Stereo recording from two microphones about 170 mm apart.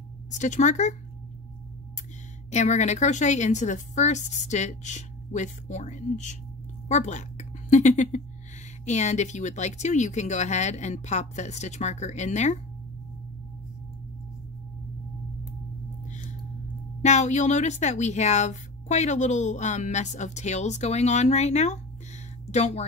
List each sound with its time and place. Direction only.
0.4 s speech: 45° left (ahead or behind)
2.5 s a woman's voice: 45° left (ahead or behind)
17.0 s speech: 45° left (ahead or behind)